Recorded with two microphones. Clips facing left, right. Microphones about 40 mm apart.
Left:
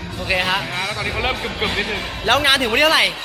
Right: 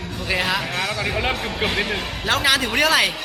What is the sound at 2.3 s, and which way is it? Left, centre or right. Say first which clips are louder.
Speech: left 4 dB; left.